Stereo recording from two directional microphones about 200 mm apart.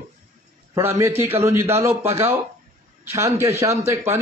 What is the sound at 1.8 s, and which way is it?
Speech, 30° right (ahead or behind).